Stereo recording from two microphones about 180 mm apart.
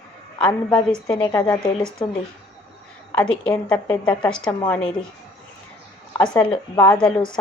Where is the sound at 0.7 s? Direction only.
25° left (ahead or behind).